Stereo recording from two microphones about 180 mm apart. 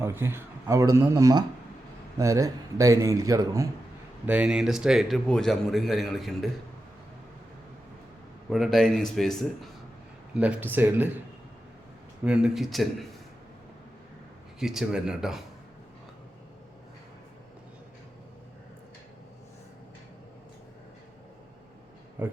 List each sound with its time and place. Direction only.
0.0 s a man's voice: 15° right (ahead or behind)
4.3 s a man's voice: 5° right (ahead or behind)
8.4 s a man's voice: centre (ahead or behind)
12.2 s a man's voice: 5° right (ahead or behind)
14.6 s a man's voice: 5° right (ahead or behind)
22.2 s speech: 10° right (ahead or behind)